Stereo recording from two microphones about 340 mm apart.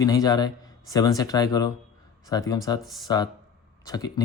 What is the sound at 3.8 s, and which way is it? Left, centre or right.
Speech, centre.